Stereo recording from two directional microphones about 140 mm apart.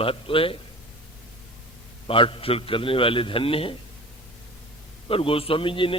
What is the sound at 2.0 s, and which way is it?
Speech, 40° left (ahead or behind).